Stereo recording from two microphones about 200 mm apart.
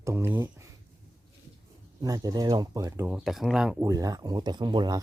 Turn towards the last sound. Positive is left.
turn(degrees=-20)  # may be behind; listen again after turning